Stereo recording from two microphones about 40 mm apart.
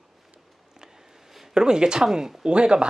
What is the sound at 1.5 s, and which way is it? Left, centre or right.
Speech, centre.